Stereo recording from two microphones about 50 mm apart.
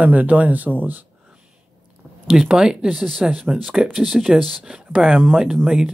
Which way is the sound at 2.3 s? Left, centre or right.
Centre.